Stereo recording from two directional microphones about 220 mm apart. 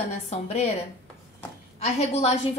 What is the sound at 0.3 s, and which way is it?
Speech, 30° left (ahead or behind).